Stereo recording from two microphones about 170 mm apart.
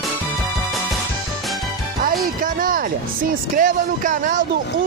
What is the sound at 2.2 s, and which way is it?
Speech, 55° right (ahead or behind).